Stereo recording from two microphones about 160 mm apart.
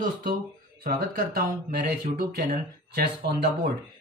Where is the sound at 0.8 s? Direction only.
65° right (ahead or behind).